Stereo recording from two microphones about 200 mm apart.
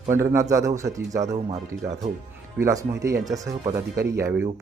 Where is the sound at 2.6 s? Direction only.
15° right (ahead or behind).